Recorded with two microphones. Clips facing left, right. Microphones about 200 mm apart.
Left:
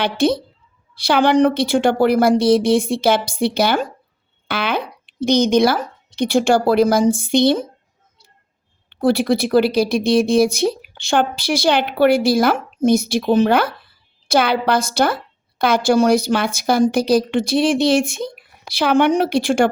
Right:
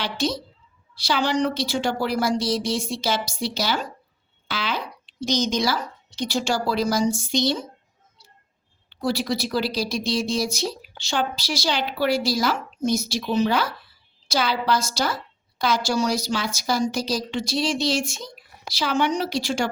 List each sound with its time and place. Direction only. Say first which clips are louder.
0.0 s a woman's voice: left 9 dB; 55° left (ahead or behind)
8.9 s a woman's voice: left 9 dB; 55° left (ahead or behind)